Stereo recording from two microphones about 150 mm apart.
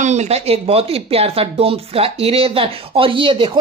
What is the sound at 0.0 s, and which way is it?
Speech, 50° right (ahead or behind).